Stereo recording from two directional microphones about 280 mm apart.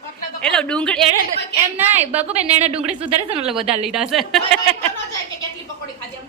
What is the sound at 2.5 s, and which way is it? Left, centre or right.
Speech, right.